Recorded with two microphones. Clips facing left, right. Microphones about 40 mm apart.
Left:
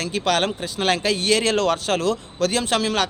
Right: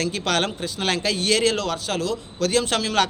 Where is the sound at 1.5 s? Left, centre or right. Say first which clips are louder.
Left 5 dB; left.